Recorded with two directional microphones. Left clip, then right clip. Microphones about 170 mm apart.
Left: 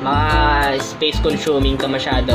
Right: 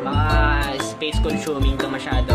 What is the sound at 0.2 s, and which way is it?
Music, 10° right (ahead or behind).